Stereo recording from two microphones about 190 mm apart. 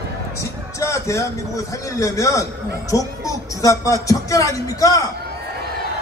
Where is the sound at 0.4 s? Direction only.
15° left (ahead or behind).